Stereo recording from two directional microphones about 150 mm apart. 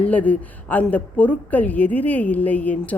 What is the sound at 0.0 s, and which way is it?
A woman's voice, 10° left (ahead or behind).